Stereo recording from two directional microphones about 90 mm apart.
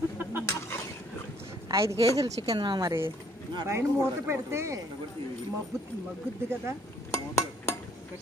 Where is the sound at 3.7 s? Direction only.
30° right (ahead or behind).